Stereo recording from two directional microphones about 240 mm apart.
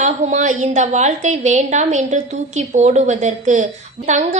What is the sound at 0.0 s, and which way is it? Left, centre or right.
A woman's voice, right.